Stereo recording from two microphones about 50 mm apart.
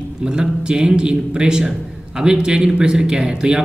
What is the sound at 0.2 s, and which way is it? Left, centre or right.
Speech, centre.